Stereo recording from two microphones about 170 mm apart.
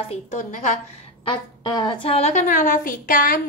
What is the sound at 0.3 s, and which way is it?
Speech, 45° left (ahead or behind).